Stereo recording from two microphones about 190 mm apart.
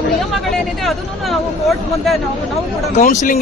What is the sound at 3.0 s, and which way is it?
Speech, 40° left (ahead or behind).